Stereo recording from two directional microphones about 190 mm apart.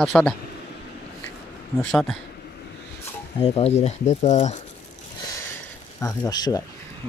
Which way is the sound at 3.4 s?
30° left (ahead or behind).